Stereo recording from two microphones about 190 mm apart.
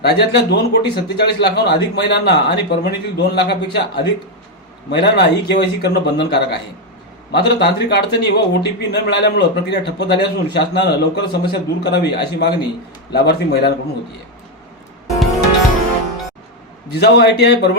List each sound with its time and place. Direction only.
0.0 s a man's voice: 60° left (ahead or behind)
16.9 s a man's voice: 60° left (ahead or behind)